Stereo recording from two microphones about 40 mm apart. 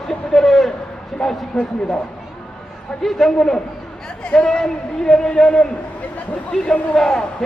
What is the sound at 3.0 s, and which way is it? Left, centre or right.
Speech, centre.